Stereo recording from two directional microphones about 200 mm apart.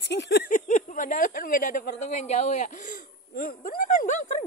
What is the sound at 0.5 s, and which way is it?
Speech, 40° left (ahead or behind).